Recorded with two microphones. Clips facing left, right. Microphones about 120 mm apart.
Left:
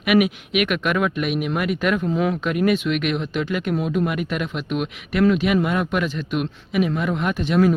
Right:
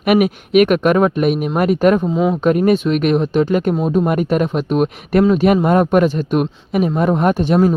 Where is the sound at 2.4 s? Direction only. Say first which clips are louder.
Right 6 dB; 40° right (ahead or behind).